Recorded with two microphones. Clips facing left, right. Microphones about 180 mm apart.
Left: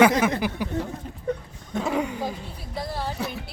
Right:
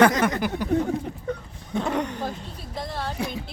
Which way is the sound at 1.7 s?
5° left (ahead or behind).